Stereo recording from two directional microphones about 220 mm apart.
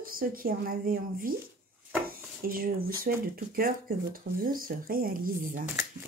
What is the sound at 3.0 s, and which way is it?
Speech, 40° right (ahead or behind).